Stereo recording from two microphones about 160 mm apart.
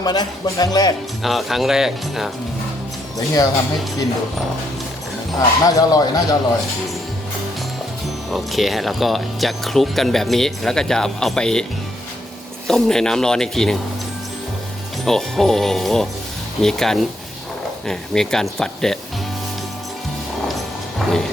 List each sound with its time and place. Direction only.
0.0 s speech: 25° left (ahead or behind)
1.2 s speech: centre (ahead or behind)
3.2 s speech: 20° left (ahead or behind)
5.4 s speech: 20° left (ahead or behind)
8.3 s speech: centre (ahead or behind)
12.6 s speech: 5° left (ahead or behind)
15.0 s speech: centre (ahead or behind)
21.0 s music: centre (ahead or behind)